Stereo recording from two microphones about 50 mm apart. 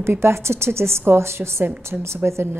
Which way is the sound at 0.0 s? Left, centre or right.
Right.